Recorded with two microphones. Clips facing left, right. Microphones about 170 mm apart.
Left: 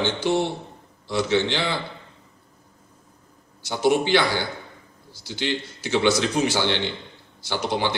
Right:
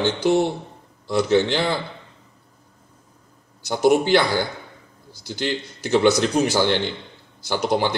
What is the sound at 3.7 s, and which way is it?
A man's voice, 45° right (ahead or behind).